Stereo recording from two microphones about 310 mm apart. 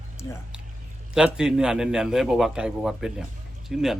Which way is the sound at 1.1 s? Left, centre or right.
Centre.